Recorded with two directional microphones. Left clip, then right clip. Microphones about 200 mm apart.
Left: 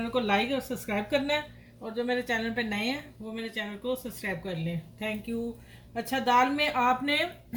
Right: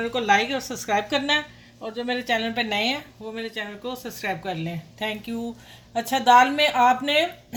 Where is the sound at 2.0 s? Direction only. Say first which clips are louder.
Right 4 dB; 50° right (ahead or behind).